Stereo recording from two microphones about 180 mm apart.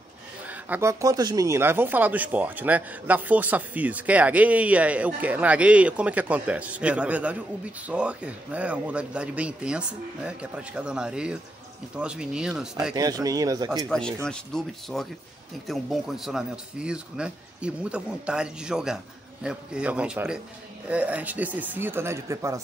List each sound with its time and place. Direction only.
0.5 s speech: 10° right (ahead or behind)
12.9 s speech: 20° right (ahead or behind)
13.8 s speech: 5° left (ahead or behind); by 22.6 s 15° right (ahead or behind)